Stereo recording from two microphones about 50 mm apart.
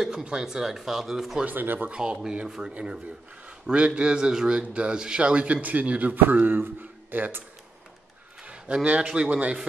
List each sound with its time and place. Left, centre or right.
0.1 s speech: centre
1.4 s speech: right
1.9 s speech: centre; by 7.4 s right
8.5 s a man's voice: right